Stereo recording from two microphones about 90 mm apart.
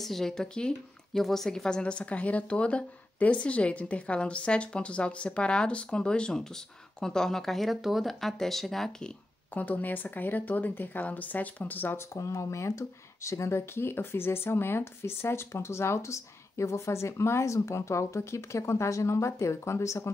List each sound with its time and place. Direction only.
0.0 s a woman's voice: 5° left (ahead or behind)
9.5 s speech: 20° left (ahead or behind)
12.1 s speech: 35° left (ahead or behind)